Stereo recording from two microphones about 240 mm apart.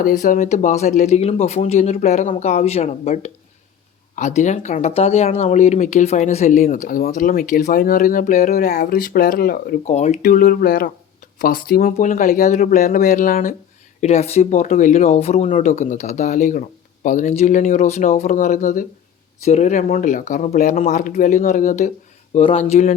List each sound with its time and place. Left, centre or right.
0.0 s speech: left